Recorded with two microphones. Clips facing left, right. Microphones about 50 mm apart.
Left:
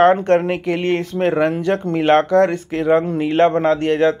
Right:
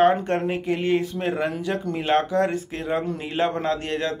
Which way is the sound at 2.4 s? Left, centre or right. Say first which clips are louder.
Left 8 dB; left.